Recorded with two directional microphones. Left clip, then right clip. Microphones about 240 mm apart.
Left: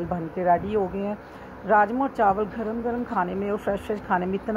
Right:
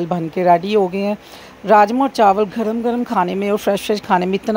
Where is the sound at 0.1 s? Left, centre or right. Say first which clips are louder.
Right 8 dB; right.